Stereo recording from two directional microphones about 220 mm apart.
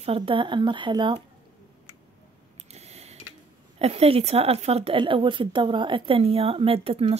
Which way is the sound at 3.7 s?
30° right (ahead or behind).